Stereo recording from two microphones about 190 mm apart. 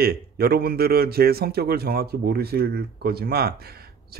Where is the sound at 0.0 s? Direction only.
55° right (ahead or behind).